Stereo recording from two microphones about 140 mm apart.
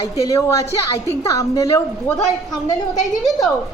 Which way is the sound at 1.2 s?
20° left (ahead or behind).